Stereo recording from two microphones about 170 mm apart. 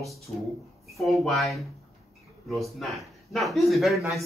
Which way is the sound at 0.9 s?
Centre (ahead or behind).